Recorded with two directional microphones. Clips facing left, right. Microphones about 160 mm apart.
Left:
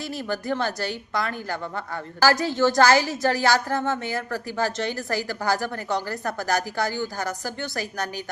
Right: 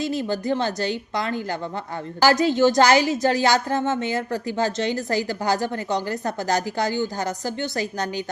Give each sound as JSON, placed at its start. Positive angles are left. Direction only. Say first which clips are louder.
{"t": 0.0, "sound": "a woman's voice", "louder": "right 5 dB", "side_deg": -20}